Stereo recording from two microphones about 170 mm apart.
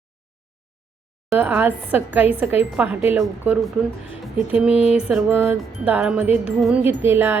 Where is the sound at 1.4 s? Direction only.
10° right (ahead or behind).